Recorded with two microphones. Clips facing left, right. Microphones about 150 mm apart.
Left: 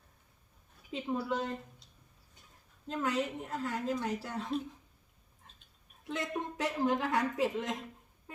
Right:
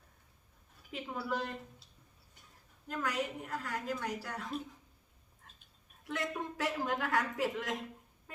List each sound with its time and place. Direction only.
0.9 s a woman's voice: 20° left (ahead or behind)
2.8 s a woman's voice: 25° left (ahead or behind)
6.1 s a woman's voice: 20° left (ahead or behind)